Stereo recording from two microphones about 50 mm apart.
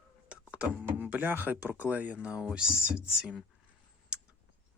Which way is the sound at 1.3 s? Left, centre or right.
Right.